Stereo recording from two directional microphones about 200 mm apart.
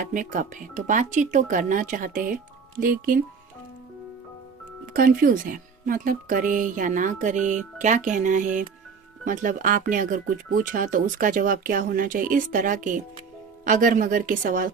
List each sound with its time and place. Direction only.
0.0 s speech: 40° right (ahead or behind)
4.9 s speech: 45° right (ahead or behind)